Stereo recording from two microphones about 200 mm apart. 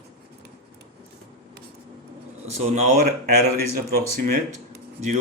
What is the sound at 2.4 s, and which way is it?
Speech, 35° right (ahead or behind).